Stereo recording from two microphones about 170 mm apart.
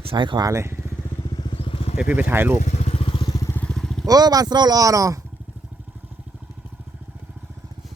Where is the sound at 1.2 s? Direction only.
25° left (ahead or behind).